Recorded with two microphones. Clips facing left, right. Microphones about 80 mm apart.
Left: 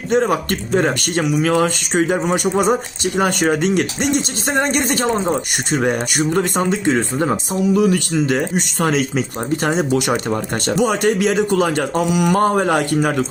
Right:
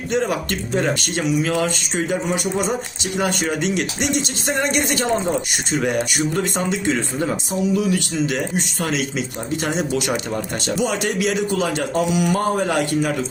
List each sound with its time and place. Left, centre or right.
0.1 s speech: left
9.6 s speech: left